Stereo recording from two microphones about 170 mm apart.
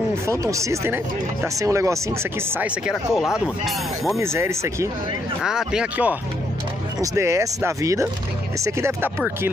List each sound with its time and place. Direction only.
0.4 s speech: 20° right (ahead or behind); by 4.2 s centre (ahead or behind)
4.2 s speech: 15° right (ahead or behind)
5.4 s speech: 5° right (ahead or behind)